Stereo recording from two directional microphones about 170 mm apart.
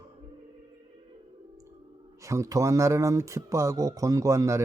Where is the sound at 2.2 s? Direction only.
20° right (ahead or behind).